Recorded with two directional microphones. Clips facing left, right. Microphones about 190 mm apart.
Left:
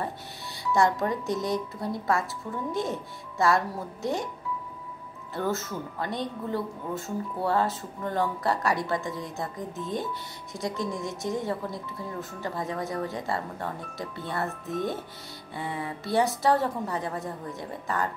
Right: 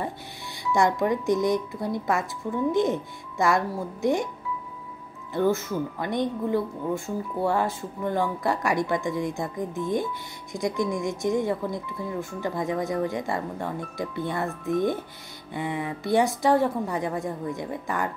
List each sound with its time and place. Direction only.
0.7 s speech: 15° right (ahead or behind)
5.3 s speech: 15° right (ahead or behind)